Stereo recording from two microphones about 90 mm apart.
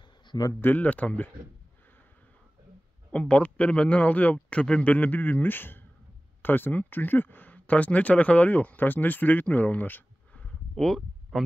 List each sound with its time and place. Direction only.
0.3 s speech: 45° left (ahead or behind)
0.6 s speech: 20° left (ahead or behind)
3.1 s speech: 15° left (ahead or behind)
10.7 s a sound: 5° left (ahead or behind)